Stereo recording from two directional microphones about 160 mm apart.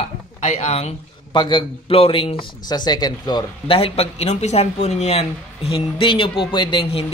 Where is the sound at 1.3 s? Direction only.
30° left (ahead or behind).